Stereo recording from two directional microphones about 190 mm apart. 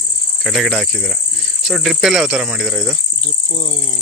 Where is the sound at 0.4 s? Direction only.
Centre (ahead or behind).